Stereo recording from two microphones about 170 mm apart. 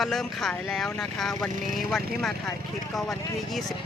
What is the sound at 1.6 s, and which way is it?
Speech, 55° right (ahead or behind).